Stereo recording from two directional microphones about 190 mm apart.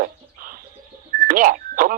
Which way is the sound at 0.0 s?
45° right (ahead or behind).